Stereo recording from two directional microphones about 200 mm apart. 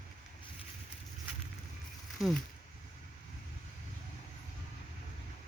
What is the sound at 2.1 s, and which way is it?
Speech, centre (ahead or behind).